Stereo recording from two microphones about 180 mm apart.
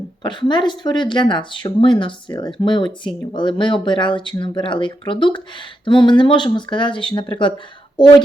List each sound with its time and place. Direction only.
0.2 s speech: 25° left (ahead or behind)